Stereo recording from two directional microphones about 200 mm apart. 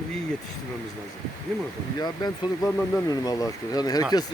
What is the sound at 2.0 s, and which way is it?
Speech, 20° left (ahead or behind).